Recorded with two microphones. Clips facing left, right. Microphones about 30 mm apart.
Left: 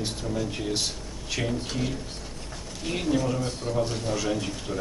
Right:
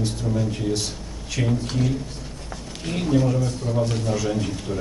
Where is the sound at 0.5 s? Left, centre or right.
Centre.